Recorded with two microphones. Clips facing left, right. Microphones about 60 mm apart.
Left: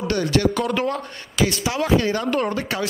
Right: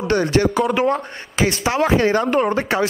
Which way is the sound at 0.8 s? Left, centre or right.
Right.